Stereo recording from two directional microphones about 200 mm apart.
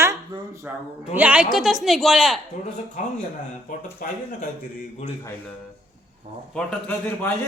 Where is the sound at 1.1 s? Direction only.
5° right (ahead or behind).